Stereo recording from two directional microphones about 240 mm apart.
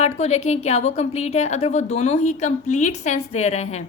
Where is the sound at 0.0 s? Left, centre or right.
Left.